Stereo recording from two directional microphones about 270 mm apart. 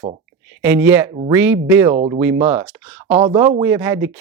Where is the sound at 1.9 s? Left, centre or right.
Right.